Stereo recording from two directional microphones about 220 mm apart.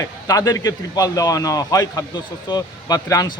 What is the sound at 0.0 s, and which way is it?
Speech, 15° left (ahead or behind).